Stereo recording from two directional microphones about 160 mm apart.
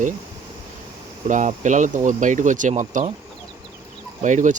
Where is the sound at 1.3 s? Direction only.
50° right (ahead or behind).